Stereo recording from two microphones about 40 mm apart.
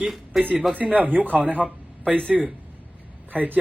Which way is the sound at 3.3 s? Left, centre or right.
Right.